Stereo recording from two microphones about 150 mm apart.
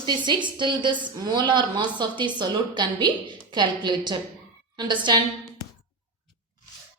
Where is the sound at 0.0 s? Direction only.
30° right (ahead or behind).